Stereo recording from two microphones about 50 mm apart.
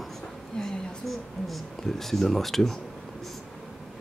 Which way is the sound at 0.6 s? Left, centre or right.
Centre.